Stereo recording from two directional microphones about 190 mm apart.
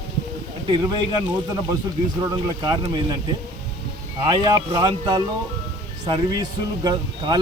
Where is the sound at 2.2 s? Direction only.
20° right (ahead or behind).